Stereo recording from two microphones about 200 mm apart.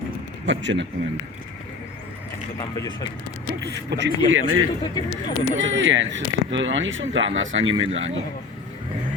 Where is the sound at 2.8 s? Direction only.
20° left (ahead or behind).